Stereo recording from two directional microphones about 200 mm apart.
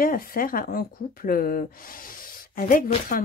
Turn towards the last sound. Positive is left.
turn(degrees=40)  # may be behind; listen again after turning